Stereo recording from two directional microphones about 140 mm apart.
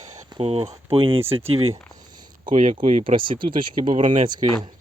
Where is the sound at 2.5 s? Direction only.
65° right (ahead or behind).